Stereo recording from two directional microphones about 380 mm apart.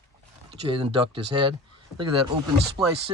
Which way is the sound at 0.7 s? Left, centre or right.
Centre.